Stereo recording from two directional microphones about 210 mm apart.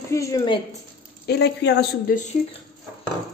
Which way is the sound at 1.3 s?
50° left (ahead or behind).